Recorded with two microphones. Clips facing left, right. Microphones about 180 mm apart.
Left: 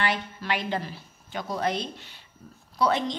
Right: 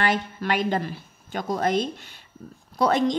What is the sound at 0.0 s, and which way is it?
Speech, 45° right (ahead or behind).